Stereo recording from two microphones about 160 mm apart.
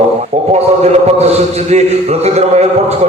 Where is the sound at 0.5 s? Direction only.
40° right (ahead or behind).